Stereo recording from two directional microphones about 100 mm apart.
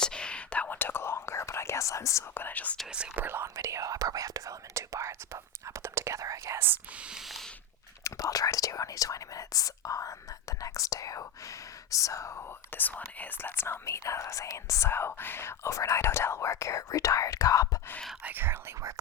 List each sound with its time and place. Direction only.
0.0 s whispering: 10° left (ahead or behind)
2.9 s whispering: 10° right (ahead or behind)
3.2 s whispering: 25° right (ahead or behind); by 7.5 s centre (ahead or behind)
8.0 s whispering: 35° left (ahead or behind)
18.2 s whispering: 20° right (ahead or behind)